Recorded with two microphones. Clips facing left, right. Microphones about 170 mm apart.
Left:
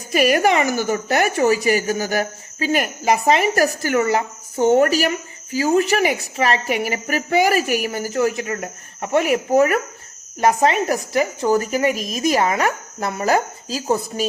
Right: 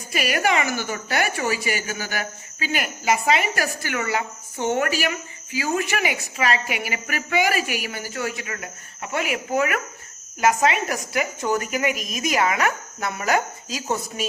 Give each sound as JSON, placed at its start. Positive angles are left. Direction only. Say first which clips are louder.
{"t": 0.1, "sound": "a woman's voice", "louder": "left 6 dB", "side_deg": 40}